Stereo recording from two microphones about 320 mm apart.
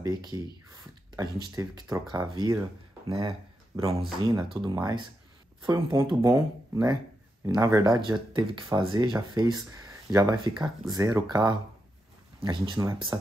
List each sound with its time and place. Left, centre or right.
0.0 s speech: centre